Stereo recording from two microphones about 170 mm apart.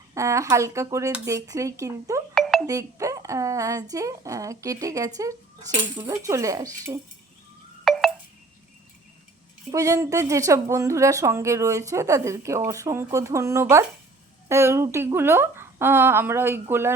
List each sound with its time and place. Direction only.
0.1 s speech: 20° right (ahead or behind)
2.3 s doorbell: centre (ahead or behind)
2.6 s a woman's voice: 20° right (ahead or behind)
7.9 s wind chime: centre (ahead or behind)
9.7 s speech: 20° right (ahead or behind)